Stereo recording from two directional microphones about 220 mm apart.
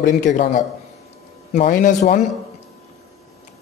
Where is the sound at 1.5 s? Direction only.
35° left (ahead or behind).